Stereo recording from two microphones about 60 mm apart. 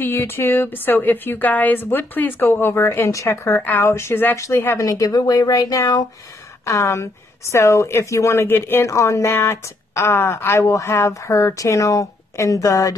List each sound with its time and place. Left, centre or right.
0.0 s a woman's voice: left
4.4 s speech: left
4.8 s speech: left
6.6 s speech: left
8.5 s a woman's voice: left
8.8 s speech: left
10.6 s speech: left
11.1 s speech: left